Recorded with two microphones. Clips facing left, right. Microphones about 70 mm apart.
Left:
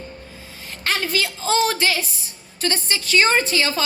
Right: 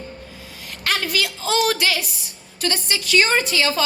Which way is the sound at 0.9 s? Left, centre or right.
Left.